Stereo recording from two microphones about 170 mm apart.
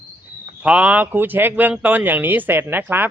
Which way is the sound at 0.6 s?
5° right (ahead or behind).